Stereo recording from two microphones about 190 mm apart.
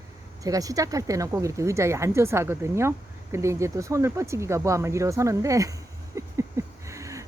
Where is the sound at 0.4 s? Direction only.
20° right (ahead or behind).